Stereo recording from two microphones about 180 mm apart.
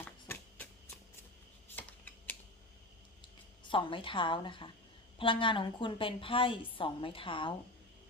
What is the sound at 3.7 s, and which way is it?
A woman's voice, 30° left (ahead or behind).